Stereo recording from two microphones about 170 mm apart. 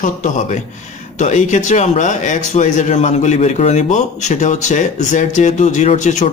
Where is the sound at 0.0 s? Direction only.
50° left (ahead or behind).